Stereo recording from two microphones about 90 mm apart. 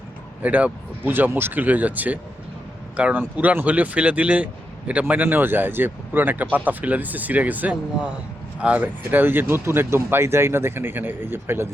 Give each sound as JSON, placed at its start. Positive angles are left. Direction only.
{"t": 0.4, "sound": "speech", "side_deg": -20}